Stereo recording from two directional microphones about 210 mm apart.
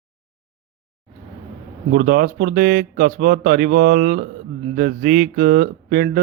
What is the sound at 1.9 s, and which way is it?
Speech, 40° right (ahead or behind).